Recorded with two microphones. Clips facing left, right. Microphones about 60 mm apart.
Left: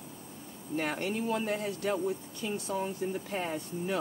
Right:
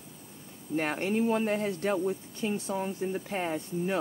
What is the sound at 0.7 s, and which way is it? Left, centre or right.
Speech, right.